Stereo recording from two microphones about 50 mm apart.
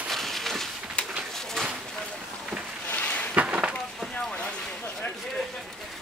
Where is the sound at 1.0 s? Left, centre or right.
Left.